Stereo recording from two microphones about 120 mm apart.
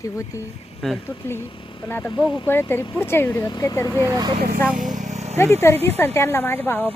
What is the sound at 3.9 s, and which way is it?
Speech, 25° right (ahead or behind).